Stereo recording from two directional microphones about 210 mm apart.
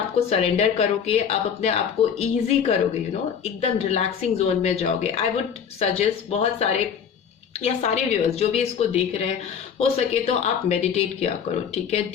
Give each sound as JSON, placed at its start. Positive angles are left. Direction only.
{"t": 0.3, "sound": "a woman's voice", "side_deg": 30}